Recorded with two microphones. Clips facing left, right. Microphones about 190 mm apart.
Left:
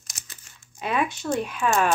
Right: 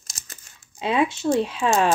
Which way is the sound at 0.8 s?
25° right (ahead or behind).